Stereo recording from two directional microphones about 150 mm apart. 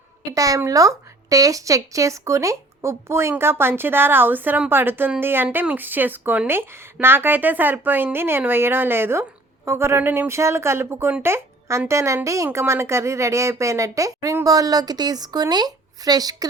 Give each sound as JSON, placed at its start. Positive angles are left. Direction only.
{"t": 0.3, "sound": "a woman's voice", "side_deg": -20}